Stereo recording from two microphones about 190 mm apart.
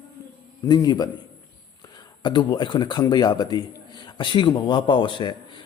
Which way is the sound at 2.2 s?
25° left (ahead or behind).